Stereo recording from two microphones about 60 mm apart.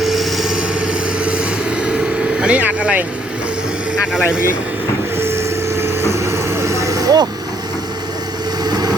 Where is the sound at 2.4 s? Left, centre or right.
Right.